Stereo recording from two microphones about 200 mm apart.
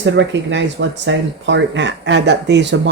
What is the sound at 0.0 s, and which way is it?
Speech, 65° right (ahead or behind).